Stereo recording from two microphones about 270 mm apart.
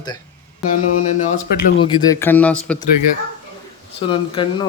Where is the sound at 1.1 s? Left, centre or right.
Left.